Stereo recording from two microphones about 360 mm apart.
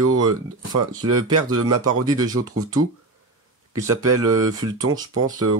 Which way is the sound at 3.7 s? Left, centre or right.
Centre.